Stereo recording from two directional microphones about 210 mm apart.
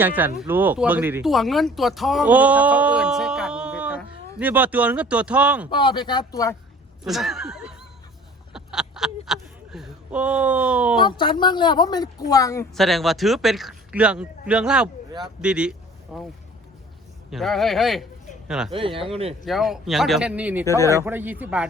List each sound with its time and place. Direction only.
0.0 s speech: 10° right (ahead or behind)
5.7 s a woman's voice: 20° left (ahead or behind)
7.0 s speech: centre (ahead or behind)
8.5 s a sound: 5° right (ahead or behind)
10.9 s a woman's voice: 20° left (ahead or behind)
12.7 s speech: centre (ahead or behind)
17.3 s speech: centre (ahead or behind)
18.7 s speech: 25° right (ahead or behind)
19.5 s speech: centre (ahead or behind)
20.7 s speech: 15° left (ahead or behind)
20.9 s speech: 10° right (ahead or behind)